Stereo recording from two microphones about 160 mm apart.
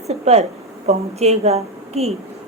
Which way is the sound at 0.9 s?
40° right (ahead or behind).